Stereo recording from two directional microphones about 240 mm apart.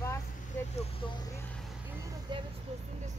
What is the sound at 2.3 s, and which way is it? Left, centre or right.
Speech, centre.